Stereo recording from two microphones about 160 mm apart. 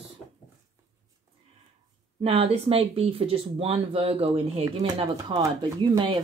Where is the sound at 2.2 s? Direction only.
35° right (ahead or behind).